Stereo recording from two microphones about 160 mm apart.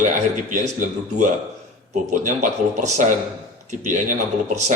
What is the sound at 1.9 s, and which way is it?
A man's voice, 55° right (ahead or behind).